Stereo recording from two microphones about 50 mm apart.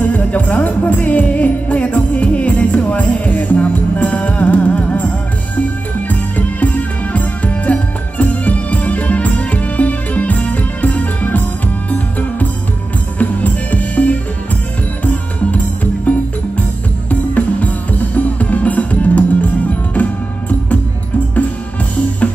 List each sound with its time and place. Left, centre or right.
0.0 s music: left
6.0 s music: left
15.5 s music: left